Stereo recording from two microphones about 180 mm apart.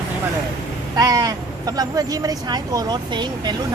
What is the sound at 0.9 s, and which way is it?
Speech, 20° right (ahead or behind).